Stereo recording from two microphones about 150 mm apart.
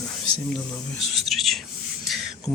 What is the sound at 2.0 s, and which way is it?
Beatboxing, centre (ahead or behind).